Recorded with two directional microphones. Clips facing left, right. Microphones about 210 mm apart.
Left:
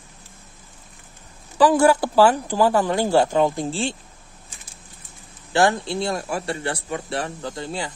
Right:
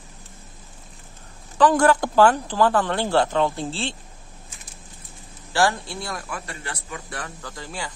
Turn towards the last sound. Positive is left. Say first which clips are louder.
# left 5 dB
turn(degrees=25)  # may be behind; listen again after turning